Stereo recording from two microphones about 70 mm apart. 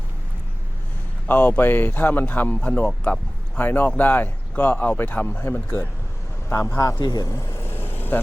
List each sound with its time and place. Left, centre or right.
1.3 s speech: left
6.5 s speech: left
7.0 s speech: left
7.3 s vehicle: left